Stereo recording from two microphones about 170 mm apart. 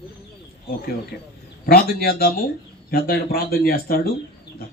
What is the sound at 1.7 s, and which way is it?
Speech, 60° left (ahead or behind).